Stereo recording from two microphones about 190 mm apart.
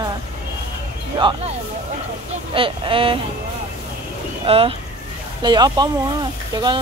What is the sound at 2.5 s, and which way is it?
Speech, 30° right (ahead or behind).